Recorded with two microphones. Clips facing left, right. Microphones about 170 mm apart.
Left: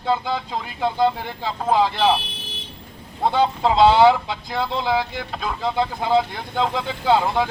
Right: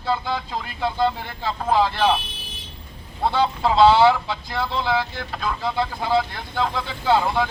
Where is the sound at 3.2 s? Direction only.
15° left (ahead or behind).